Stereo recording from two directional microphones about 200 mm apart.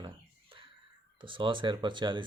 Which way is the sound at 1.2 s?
25° right (ahead or behind).